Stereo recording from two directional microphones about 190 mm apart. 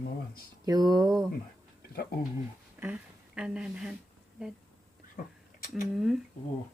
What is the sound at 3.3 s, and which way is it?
Speech, 5° right (ahead or behind).